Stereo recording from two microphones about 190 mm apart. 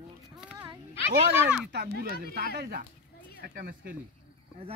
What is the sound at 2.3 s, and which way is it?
Speech, 55° right (ahead or behind).